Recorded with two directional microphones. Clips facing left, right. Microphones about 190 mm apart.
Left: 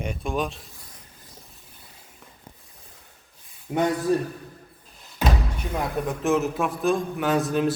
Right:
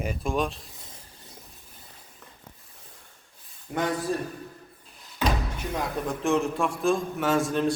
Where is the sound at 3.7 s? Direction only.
20° left (ahead or behind).